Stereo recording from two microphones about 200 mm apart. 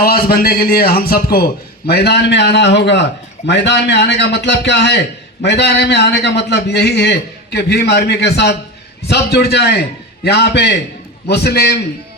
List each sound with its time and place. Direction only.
0.0 s a man's voice: 50° left (ahead or behind)